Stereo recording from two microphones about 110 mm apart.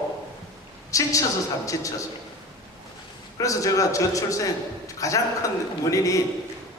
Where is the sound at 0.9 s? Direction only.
30° left (ahead or behind).